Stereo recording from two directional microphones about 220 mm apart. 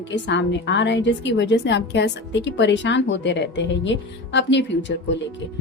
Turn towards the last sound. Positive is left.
turn(degrees=55)  # may be behind; listen again after turning